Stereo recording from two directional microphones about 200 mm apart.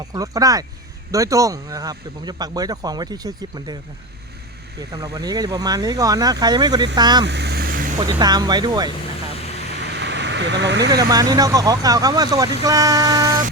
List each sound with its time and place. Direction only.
0.1 s speech: 15° right (ahead or behind)
4.8 s speech: 20° right (ahead or behind)
7.3 s vehicle: 55° right (ahead or behind)
7.9 s speech: 20° right (ahead or behind)
9.8 s vehicle: 60° right (ahead or behind)
10.9 s speech: 20° right (ahead or behind)